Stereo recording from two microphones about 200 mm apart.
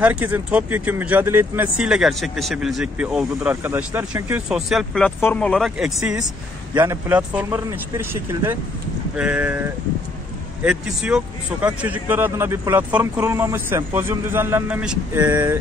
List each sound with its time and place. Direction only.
0.0 s speech: 10° right (ahead or behind)
6.1 s speech: 15° right (ahead or behind)